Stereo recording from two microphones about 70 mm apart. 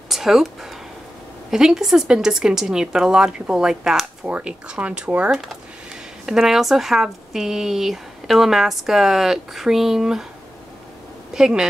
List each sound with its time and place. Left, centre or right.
0.1 s speech: centre
6.2 s speech: centre
11.3 s speech: centre